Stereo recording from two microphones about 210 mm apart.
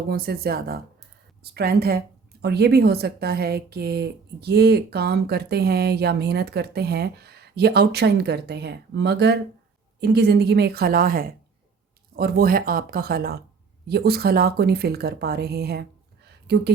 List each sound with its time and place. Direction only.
0.1 s a woman's voice: 50° right (ahead or behind)